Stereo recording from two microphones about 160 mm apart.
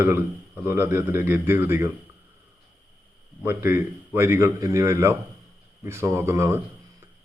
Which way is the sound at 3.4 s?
15° right (ahead or behind).